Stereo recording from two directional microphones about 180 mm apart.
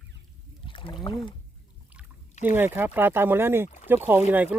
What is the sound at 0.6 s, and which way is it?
Speech, 30° left (ahead or behind).